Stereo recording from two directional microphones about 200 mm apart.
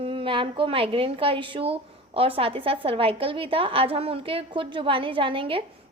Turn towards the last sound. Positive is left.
turn(degrees=-25)  # may be behind; listen again after turning